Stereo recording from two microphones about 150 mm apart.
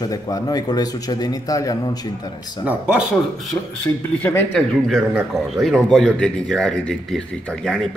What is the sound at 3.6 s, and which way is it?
Speech, 15° left (ahead or behind).